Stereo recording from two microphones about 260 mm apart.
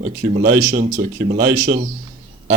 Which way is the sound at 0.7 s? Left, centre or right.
Right.